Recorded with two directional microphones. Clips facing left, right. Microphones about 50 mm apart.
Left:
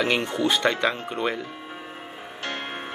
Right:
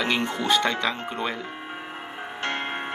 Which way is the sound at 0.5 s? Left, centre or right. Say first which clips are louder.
Right 1 dB; left.